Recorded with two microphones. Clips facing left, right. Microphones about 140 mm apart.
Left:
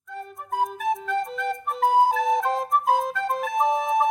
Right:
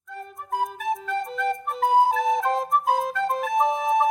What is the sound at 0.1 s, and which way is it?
Music, centre (ahead or behind).